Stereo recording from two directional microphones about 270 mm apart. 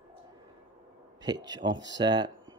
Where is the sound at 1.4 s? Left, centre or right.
Centre.